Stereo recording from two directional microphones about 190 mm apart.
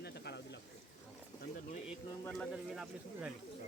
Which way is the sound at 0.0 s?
60° left (ahead or behind).